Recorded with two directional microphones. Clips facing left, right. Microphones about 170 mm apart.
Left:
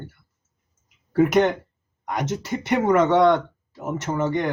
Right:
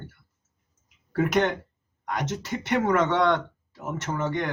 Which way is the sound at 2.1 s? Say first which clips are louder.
Left 3 dB; 10° left (ahead or behind).